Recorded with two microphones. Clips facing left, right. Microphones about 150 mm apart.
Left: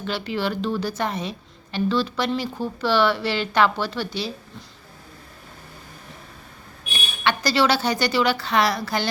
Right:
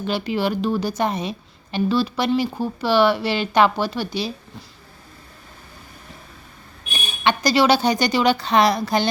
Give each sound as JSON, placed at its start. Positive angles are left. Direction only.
{"t": 0.0, "sound": "a woman's voice", "side_deg": -15}
{"t": 7.3, "sound": "a woman's voice", "side_deg": -15}